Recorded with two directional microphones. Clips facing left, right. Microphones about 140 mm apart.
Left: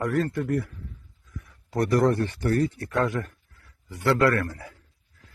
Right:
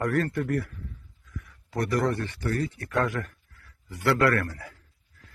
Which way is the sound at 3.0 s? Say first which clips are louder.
Left 3 dB; 25° left (ahead or behind).